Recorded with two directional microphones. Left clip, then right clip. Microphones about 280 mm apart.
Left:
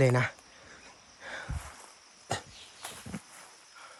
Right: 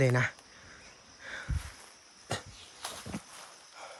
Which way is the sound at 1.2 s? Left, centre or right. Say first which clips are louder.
Left 1 dB; centre.